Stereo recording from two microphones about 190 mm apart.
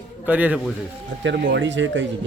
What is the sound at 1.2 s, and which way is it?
Speech, 65° right (ahead or behind).